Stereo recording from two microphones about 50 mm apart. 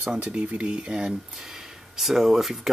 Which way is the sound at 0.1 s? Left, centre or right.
Right.